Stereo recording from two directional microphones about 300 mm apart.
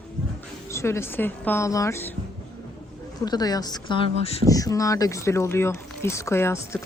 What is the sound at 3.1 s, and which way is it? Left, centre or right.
Speech, centre.